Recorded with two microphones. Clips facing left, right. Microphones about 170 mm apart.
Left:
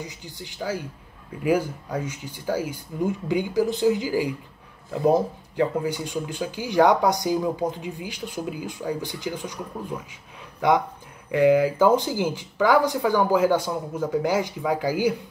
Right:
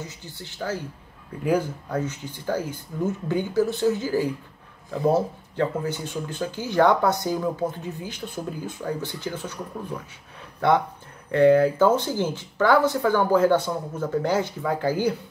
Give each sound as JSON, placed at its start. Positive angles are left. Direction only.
{"t": 0.0, "sound": "speech", "side_deg": 15}
{"t": 11.3, "sound": "speech", "side_deg": 10}